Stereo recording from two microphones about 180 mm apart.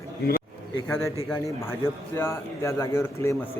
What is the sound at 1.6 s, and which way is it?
Speech, 15° left (ahead or behind).